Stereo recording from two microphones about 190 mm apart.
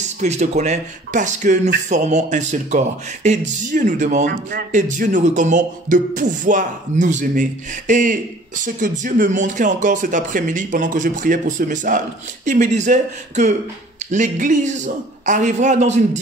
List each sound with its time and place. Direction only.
0.0 s speech: 35° right (ahead or behind)
4.3 s speech: 55° right (ahead or behind)
4.7 s speech: 40° right (ahead or behind)